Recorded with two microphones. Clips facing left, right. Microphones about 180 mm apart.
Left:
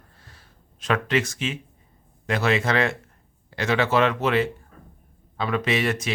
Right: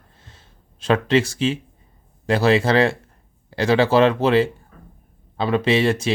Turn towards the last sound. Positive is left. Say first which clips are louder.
# right 6 dB
turn(degrees=-30)  # may be behind; listen again after turning